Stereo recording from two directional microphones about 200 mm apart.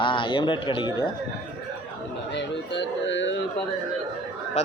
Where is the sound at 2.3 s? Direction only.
60° left (ahead or behind).